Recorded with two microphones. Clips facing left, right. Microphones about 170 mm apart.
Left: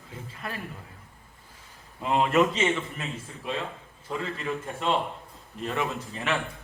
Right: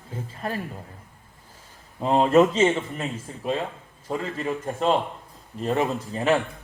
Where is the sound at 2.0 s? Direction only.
35° right (ahead or behind).